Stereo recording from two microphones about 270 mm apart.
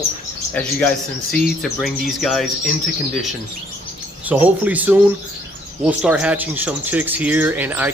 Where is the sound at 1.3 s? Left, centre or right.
Centre.